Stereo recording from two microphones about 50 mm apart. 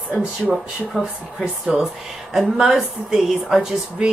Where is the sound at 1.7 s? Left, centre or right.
Right.